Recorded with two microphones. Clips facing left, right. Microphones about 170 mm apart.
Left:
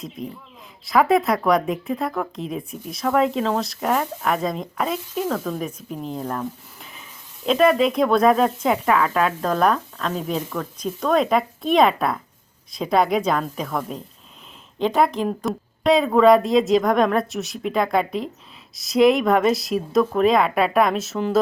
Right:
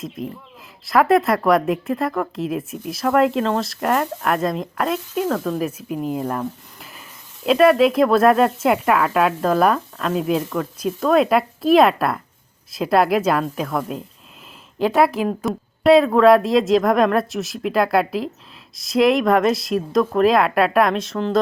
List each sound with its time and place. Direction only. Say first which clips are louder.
0.2 s speech: right 3 dB; centre (ahead or behind)